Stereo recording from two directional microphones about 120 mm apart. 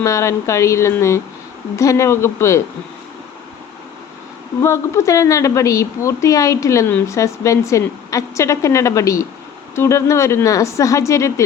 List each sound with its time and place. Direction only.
0.0 s a woman's voice: 25° left (ahead or behind)
4.6 s a woman's voice: 25° left (ahead or behind)